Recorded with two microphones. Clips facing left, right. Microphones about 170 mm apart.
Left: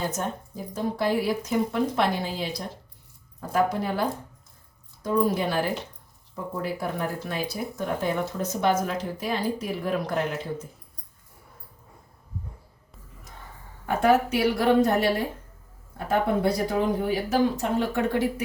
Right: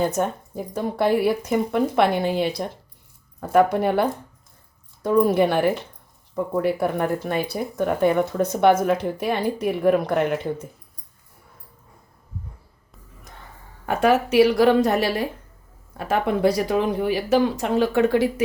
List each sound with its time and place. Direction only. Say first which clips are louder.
0.0 s a woman's voice: right 7 dB; 60° right (ahead or behind)
13.8 s speech: right 2 dB; 80° right